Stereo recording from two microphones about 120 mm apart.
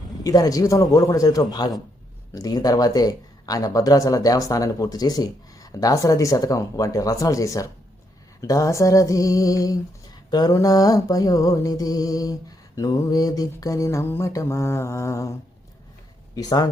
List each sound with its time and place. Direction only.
0.3 s speech: 30° left (ahead or behind)